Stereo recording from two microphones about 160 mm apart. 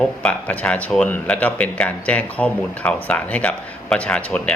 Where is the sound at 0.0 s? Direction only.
5° left (ahead or behind).